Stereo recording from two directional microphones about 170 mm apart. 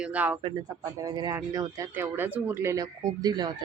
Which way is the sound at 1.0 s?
20° right (ahead or behind).